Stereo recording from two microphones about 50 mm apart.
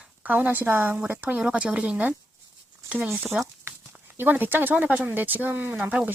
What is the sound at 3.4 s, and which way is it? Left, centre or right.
Speech, centre.